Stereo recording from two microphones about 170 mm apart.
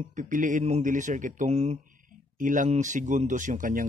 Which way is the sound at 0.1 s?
50° right (ahead or behind).